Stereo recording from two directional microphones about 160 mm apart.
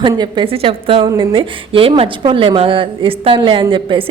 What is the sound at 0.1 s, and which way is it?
A woman's voice, 25° right (ahead or behind).